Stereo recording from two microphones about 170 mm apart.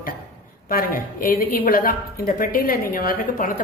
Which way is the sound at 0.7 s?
60° left (ahead or behind).